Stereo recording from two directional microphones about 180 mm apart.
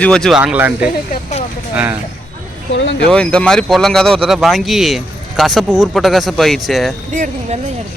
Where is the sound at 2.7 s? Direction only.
90° left.